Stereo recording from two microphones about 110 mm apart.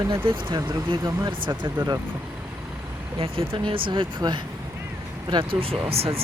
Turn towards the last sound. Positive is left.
turn(degrees=-65)  # may be behind; listen again after turning